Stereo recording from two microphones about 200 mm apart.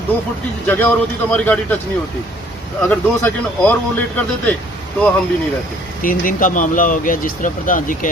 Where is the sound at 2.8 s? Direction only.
10° left (ahead or behind).